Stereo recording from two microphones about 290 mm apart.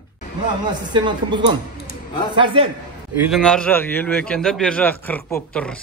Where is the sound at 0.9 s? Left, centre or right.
Centre.